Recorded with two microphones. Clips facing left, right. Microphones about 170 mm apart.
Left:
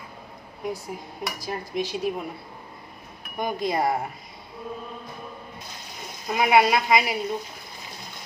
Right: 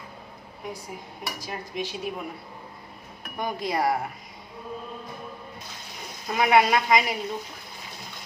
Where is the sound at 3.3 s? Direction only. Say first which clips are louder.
Left 2 dB; 20° left (ahead or behind).